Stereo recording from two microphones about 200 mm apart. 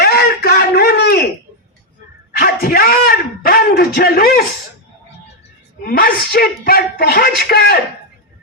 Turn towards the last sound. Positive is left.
turn(degrees=50)  # may be behind; listen again after turning